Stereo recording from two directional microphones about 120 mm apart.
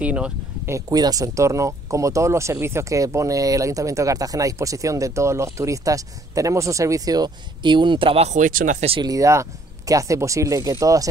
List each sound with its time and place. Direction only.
0.0 s speech: 10° right (ahead or behind)
0.7 s speech: 30° right (ahead or behind); by 8.3 s 50° right (ahead or behind)
8.3 s speech: 90° right
9.0 s speech: 30° right (ahead or behind)